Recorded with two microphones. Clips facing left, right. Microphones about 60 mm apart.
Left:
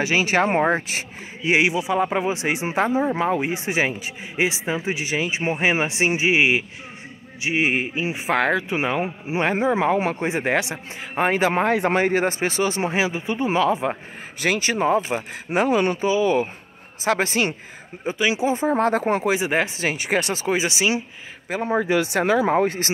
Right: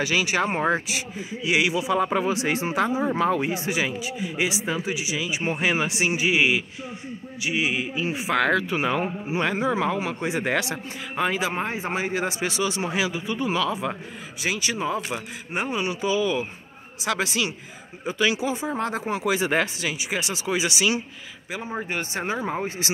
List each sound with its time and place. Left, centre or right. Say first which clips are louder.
0.0 s a man's voice: left 4 dB; left
5.4 s a man's voice: left 2 dB; left
8.3 s a man's voice: left 1 dB; left
9.4 s a man's voice: left 4 dB; left
11.1 s speech: left 5 dB; left
15.0 s a man's voice: left 6 dB; left
15.5 s speech: left 8 dB; left
16.0 s speech: left 4 dB; left
18.1 s speech: left 2 dB; left
19.4 s a man's voice: left 1 dB; centre
19.8 s speech: left 5 dB; left
21.5 s speech: left 9 dB; left
22.5 s speech: left 8 dB; left